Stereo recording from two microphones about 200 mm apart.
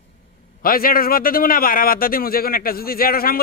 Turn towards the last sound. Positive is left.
turn(degrees=50)  # may be behind; listen again after turning